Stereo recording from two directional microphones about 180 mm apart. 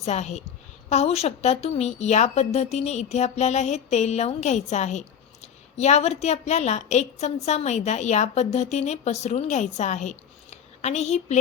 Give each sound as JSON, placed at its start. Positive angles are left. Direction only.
{"t": 0.0, "sound": "a woman's voice", "side_deg": 40}